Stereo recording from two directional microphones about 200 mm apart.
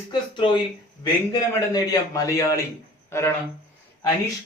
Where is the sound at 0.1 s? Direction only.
25° left (ahead or behind).